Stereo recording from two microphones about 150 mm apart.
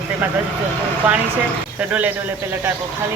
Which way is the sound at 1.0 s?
10° right (ahead or behind).